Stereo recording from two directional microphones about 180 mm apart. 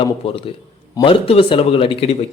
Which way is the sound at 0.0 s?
30° left (ahead or behind).